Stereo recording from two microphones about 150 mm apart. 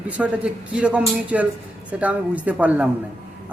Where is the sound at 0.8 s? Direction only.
5° right (ahead or behind).